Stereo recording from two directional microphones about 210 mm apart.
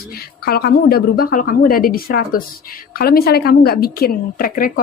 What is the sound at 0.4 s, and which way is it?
A woman's voice, 50° left (ahead or behind).